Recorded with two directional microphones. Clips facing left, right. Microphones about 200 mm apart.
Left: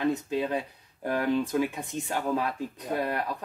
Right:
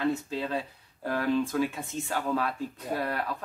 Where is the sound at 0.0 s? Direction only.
20° left (ahead or behind).